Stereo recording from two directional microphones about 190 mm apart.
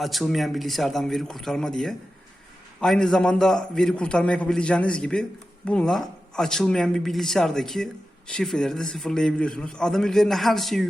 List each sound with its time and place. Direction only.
0.0 s a man's voice: centre (ahead or behind)